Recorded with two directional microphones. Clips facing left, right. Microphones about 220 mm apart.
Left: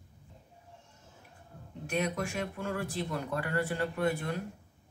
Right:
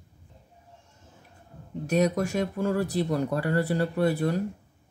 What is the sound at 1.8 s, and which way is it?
Speech, 40° right (ahead or behind).